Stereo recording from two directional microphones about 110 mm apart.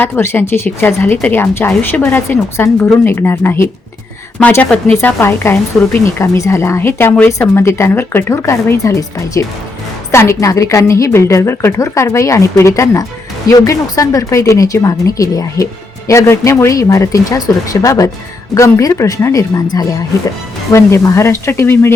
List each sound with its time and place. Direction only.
0.0 s speech: 20° left (ahead or behind)
5.0 s speech: 20° left (ahead or behind)